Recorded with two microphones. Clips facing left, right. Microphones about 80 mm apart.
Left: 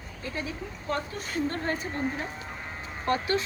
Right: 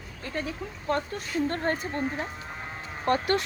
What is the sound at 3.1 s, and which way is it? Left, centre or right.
Speech, right.